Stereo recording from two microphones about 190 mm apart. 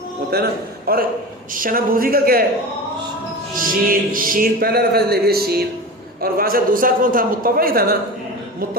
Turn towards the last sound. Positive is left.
turn(degrees=-50)  # may be behind; listen again after turning